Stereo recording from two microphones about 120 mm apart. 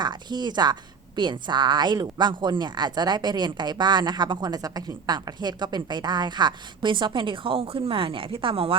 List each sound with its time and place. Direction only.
0.0 s a woman's voice: 35° right (ahead or behind)